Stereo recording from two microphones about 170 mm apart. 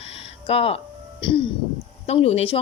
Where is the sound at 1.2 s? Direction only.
30° left (ahead or behind).